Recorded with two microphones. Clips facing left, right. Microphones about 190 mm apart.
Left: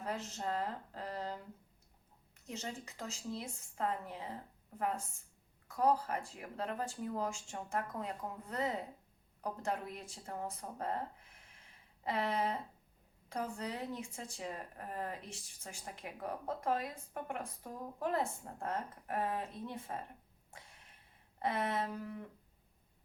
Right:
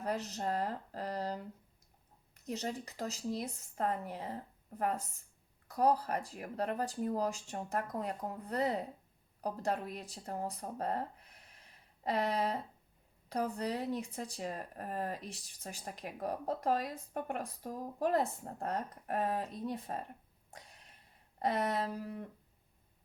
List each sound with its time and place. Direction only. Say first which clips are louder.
0.0 s speech: right 4 dB; 40° right (ahead or behind)
21.3 s speech: right 3 dB; 40° right (ahead or behind)